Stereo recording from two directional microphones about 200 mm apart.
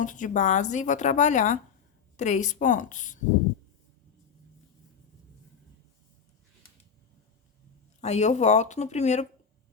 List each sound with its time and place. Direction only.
0.0 s a woman's voice: 40° left (ahead or behind)
8.0 s a woman's voice: 35° left (ahead or behind)